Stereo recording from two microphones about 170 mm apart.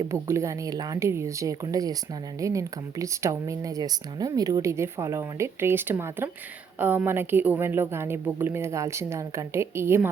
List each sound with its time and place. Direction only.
0.1 s speech: 15° right (ahead or behind)